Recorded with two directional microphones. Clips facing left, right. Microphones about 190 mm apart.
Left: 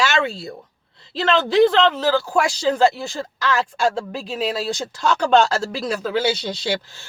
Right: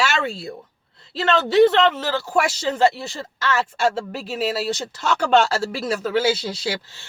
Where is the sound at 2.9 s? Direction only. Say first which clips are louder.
Left 3 dB; centre (ahead or behind).